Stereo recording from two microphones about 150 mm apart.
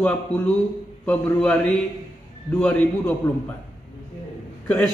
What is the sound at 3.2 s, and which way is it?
Speech, 20° left (ahead or behind).